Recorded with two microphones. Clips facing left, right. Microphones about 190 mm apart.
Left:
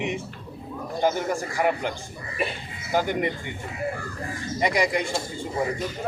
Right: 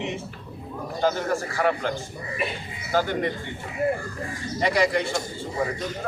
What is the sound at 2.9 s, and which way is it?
Speech, 15° left (ahead or behind).